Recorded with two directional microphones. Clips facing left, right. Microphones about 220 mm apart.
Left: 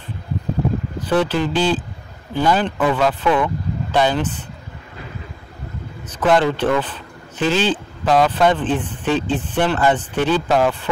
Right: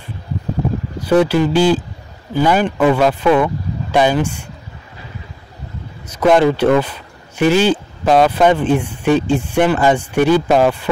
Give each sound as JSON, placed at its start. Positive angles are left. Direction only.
{"t": 0.9, "sound": "speech", "side_deg": -10}
{"t": 6.0, "sound": "speech", "side_deg": -10}